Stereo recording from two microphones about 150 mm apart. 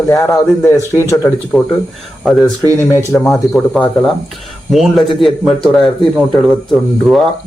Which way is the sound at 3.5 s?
5° left (ahead or behind).